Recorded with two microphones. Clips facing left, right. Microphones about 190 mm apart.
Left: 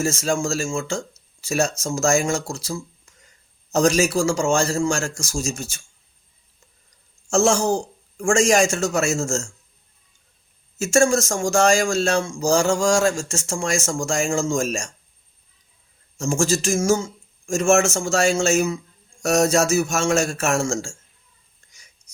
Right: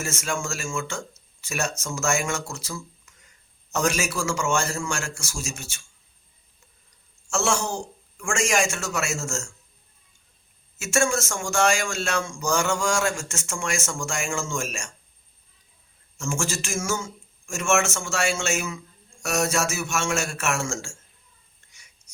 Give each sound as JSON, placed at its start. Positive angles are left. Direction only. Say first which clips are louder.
{"t": 0.0, "sound": "speech", "louder": "left 8 dB", "side_deg": 35}
{"t": 7.3, "sound": "speech", "louder": "left 7 dB", "side_deg": 40}
{"t": 10.8, "sound": "speech", "louder": "left 6 dB", "side_deg": 35}
{"t": 16.1, "sound": "speech", "louder": "left 8 dB", "side_deg": 35}